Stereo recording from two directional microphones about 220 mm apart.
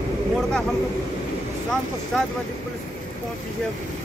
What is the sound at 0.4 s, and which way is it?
Speech, 5° left (ahead or behind).